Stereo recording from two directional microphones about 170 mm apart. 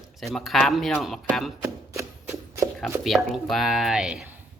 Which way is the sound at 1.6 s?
15° right (ahead or behind).